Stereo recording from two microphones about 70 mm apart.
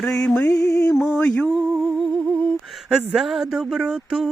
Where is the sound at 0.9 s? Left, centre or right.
Centre.